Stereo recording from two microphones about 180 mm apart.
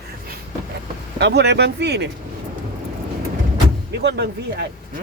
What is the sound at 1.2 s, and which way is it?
Speech, 70° right (ahead or behind).